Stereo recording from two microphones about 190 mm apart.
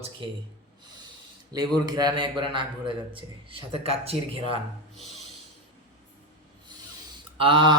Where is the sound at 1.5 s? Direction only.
20° right (ahead or behind).